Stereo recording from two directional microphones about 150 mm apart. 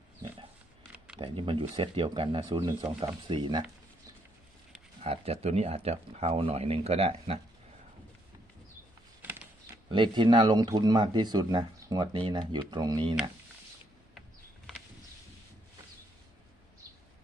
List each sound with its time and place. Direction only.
1.2 s speech: 35° right (ahead or behind)
4.9 s speech: 40° right (ahead or behind)
9.9 s speech: 30° right (ahead or behind)